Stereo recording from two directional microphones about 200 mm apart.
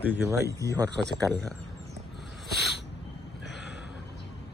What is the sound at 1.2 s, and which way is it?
Speech, 15° right (ahead or behind).